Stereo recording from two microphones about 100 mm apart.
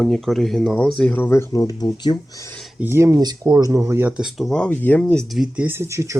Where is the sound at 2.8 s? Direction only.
25° right (ahead or behind).